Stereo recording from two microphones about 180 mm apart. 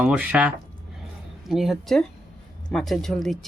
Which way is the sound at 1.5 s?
Centre (ahead or behind).